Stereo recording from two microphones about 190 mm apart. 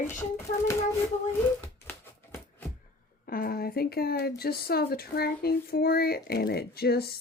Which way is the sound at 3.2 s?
50° left (ahead or behind).